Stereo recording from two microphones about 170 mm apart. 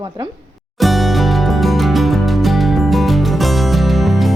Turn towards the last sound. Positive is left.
turn(degrees=0)  # may be behind; listen again after turning